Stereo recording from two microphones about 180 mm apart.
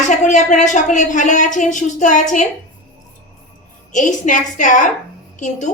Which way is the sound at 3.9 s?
45° left (ahead or behind).